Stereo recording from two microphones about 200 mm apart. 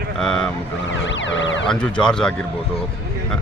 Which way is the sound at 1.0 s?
65° left (ahead or behind).